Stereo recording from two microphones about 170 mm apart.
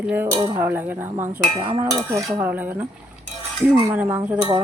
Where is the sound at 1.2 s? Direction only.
35° right (ahead or behind).